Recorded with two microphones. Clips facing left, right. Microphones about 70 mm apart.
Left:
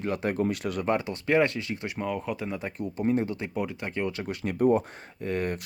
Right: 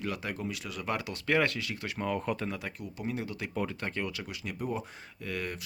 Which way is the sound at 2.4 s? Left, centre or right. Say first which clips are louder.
Left 5 dB; left.